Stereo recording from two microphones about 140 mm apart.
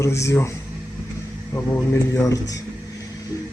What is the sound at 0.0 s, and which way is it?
Speech, 20° left (ahead or behind).